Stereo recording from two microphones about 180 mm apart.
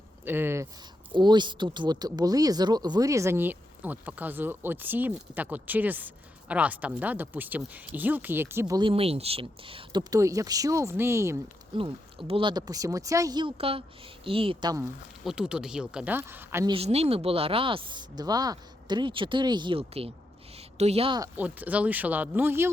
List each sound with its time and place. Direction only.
0.3 s speech: 10° right (ahead or behind)
1.1 s speech: 25° right (ahead or behind)
8.9 s speech: 35° right (ahead or behind); by 11.3 s 15° right (ahead or behind)
12.3 s speech: 25° right (ahead or behind)
15.2 s speech: 5° right (ahead or behind)
16.6 s a woman's voice: 35° right (ahead or behind)
21.2 s speech: 10° right (ahead or behind)